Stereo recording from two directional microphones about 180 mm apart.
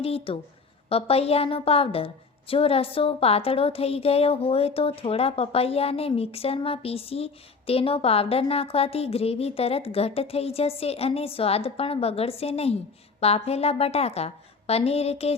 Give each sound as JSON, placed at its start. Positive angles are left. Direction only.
{"t": 0.0, "sound": "a woman's voice", "side_deg": 30}